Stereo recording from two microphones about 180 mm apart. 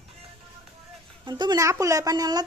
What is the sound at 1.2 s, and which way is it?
Speech, 25° right (ahead or behind).